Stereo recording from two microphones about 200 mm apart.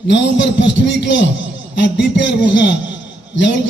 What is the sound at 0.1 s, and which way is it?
A man's voice, 65° left (ahead or behind).